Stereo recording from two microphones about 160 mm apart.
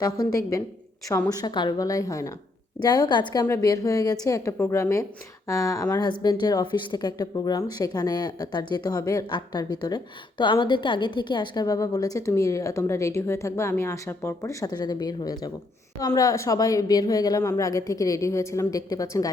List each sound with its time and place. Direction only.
0.5 s speech: 20° left (ahead or behind)